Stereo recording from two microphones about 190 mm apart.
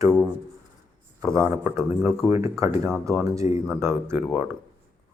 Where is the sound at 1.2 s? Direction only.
15° right (ahead or behind).